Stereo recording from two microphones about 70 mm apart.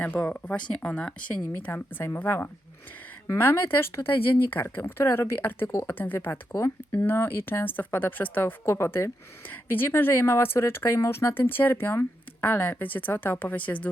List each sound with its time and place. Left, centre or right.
0.0 s a woman's voice: left
1.6 s a woman's voice: left